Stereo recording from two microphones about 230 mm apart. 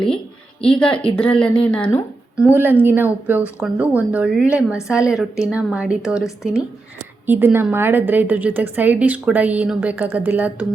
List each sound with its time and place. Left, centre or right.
0.6 s a woman's voice: centre